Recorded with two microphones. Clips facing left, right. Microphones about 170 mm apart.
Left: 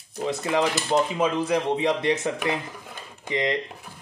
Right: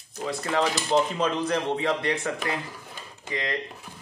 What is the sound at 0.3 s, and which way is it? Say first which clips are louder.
Speech: left 2 dB; 15° left (ahead or behind).